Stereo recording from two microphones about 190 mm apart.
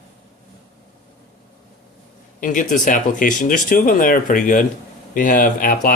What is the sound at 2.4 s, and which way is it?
Speech, 45° left (ahead or behind).